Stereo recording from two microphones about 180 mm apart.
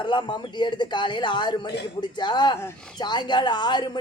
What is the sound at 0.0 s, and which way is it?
Speech, 25° left (ahead or behind).